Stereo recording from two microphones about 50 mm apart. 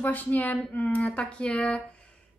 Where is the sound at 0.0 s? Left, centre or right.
Left.